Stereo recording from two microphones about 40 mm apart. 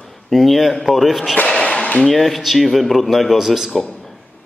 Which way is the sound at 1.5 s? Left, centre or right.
Centre.